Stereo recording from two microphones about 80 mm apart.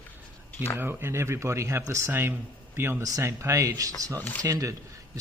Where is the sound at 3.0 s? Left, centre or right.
Right.